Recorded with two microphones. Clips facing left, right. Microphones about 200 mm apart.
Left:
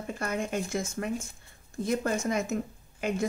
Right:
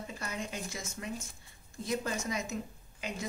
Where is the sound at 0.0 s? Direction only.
55° left (ahead or behind).